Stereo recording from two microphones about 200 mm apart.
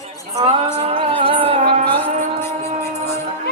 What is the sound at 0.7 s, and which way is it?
Music, 25° right (ahead or behind).